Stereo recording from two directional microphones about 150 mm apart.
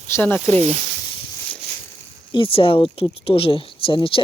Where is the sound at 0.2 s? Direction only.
10° left (ahead or behind).